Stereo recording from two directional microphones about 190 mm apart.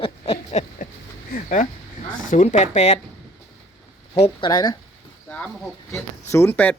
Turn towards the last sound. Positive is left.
turn(degrees=10)  # may be behind; listen again after turning